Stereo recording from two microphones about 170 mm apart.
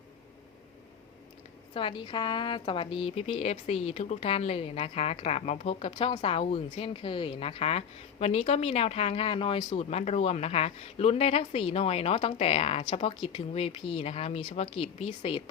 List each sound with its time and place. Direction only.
1.7 s a woman's voice: 30° left (ahead or behind)